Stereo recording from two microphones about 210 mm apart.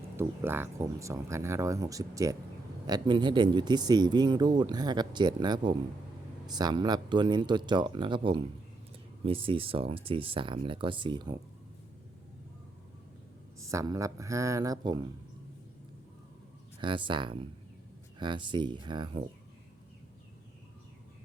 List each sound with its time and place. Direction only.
0.2 s speech: 10° right (ahead or behind)
13.6 s speech: 15° right (ahead or behind)
16.8 s speech: 25° right (ahead or behind)